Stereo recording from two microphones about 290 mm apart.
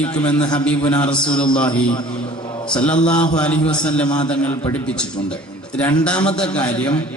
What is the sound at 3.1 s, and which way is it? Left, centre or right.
Speech, centre.